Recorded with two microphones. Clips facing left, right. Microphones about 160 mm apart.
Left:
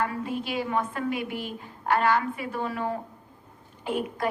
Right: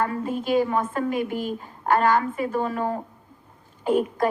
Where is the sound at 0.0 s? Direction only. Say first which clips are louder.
Right 3 dB; 45° right (ahead or behind).